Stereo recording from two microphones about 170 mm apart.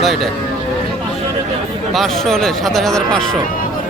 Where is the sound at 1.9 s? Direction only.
Centre (ahead or behind).